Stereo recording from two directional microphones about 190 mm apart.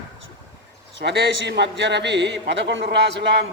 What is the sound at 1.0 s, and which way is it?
A man's voice, 65° right (ahead or behind).